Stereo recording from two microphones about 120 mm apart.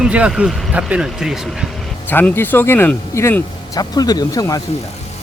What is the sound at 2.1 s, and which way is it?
Speech, 15° left (ahead or behind).